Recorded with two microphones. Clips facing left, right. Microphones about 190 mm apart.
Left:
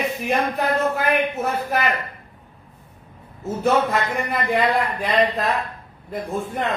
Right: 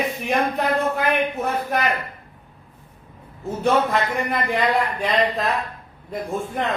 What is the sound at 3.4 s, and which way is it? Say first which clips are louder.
A man's voice: even; centre (ahead or behind).